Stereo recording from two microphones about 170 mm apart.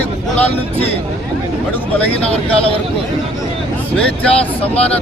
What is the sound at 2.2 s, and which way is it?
Speech, 35° left (ahead or behind).